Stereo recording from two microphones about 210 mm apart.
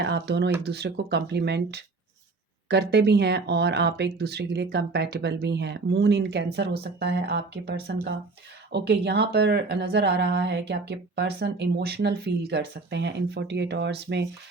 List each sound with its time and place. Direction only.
0.0 s speech: 55° right (ahead or behind)